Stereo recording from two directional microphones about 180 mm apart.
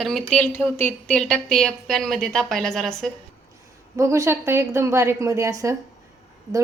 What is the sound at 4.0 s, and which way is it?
A woman's voice, 15° right (ahead or behind).